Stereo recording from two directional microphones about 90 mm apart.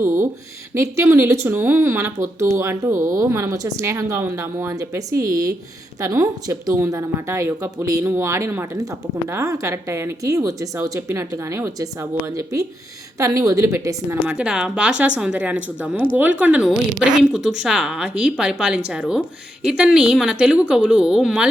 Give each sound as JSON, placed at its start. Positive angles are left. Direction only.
{"t": 0.7, "sound": "speech", "side_deg": -30}
{"t": 14.3, "sound": "a woman's voice", "side_deg": -10}